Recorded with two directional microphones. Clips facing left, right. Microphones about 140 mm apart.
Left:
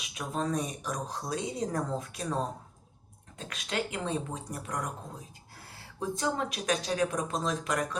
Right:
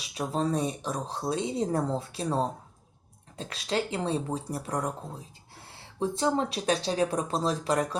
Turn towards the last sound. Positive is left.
turn(degrees=-30)  # may be behind; listen again after turning